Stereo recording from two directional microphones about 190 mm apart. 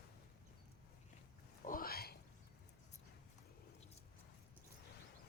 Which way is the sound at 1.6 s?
50° left (ahead or behind).